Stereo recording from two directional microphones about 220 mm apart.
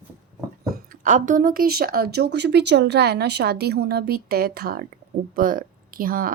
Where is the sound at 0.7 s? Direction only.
35° right (ahead or behind).